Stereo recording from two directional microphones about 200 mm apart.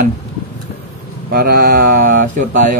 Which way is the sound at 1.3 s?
50° right (ahead or behind).